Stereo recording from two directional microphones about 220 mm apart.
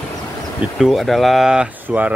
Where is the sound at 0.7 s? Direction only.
Centre (ahead or behind).